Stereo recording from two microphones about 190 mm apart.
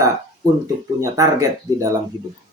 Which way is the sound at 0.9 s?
15° right (ahead or behind).